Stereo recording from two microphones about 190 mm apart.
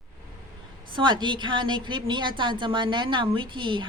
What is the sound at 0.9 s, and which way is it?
A woman's voice, 25° right (ahead or behind).